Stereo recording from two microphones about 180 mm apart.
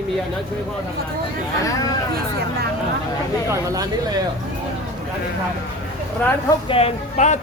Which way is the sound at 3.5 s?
20° right (ahead or behind).